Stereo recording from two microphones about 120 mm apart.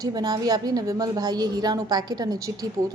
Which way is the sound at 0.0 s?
35° right (ahead or behind).